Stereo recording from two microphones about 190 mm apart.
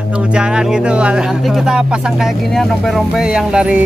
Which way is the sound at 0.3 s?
5° right (ahead or behind).